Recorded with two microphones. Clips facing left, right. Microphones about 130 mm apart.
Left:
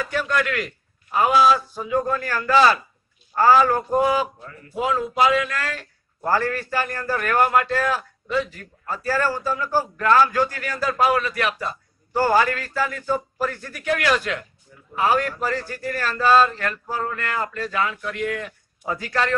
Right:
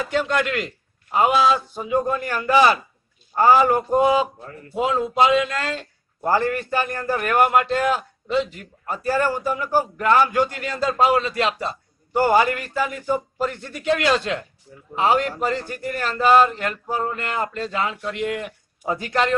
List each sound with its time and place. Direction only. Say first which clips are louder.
0.0 s a man's voice: right 2 dB; 25° right (ahead or behind)